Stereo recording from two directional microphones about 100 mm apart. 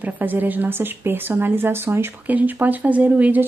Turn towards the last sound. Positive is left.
turn(degrees=-15)  # may be behind; listen again after turning